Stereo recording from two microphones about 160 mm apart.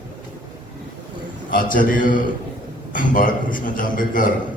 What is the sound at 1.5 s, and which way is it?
A man's voice, 60° left (ahead or behind).